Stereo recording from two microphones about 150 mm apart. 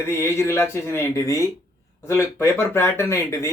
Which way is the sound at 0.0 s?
15° left (ahead or behind).